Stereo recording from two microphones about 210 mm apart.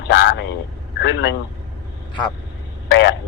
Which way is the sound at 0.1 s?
55° left (ahead or behind).